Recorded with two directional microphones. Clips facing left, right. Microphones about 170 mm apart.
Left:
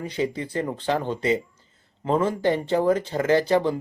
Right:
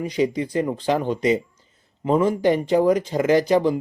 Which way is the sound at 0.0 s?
15° right (ahead or behind).